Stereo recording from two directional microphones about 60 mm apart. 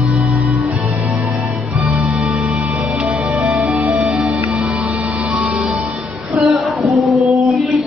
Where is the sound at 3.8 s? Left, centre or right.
Centre.